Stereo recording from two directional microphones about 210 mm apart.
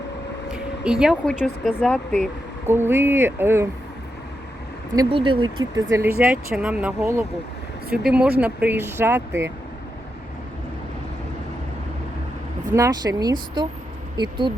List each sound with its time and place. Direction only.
0.5 s speech: 5° right (ahead or behind)
2.6 s speech: 10° right (ahead or behind)
4.9 s speech: 25° right (ahead or behind)
12.7 s speech: 15° right (ahead or behind)